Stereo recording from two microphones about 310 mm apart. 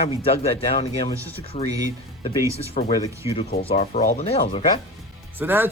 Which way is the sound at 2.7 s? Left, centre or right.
Centre.